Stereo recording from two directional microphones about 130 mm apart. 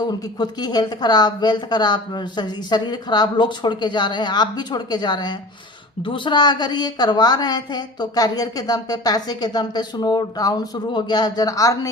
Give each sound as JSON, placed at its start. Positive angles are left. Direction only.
{"t": 0.0, "sound": "a woman's voice", "side_deg": 30}